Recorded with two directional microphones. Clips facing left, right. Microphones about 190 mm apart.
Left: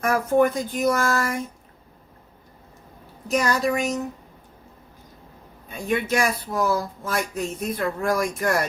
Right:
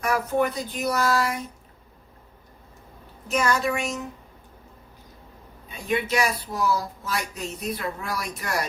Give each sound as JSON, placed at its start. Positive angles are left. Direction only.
{"t": 0.0, "sound": "speech", "side_deg": 45}
{"t": 3.2, "sound": "a woman's voice", "side_deg": 35}
{"t": 5.6, "sound": "speech", "side_deg": 50}